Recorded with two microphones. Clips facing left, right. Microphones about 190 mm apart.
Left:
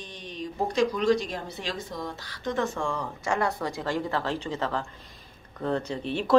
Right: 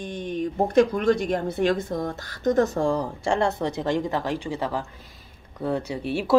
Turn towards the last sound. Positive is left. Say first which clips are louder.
# right 3 dB
turn(degrees=-10)  # may be behind; listen again after turning